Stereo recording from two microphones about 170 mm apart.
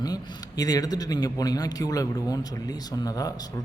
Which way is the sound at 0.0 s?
20° left (ahead or behind).